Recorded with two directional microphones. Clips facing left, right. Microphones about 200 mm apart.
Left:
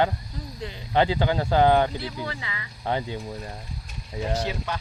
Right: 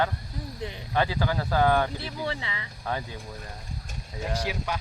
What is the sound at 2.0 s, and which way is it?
Speech, 25° right (ahead or behind).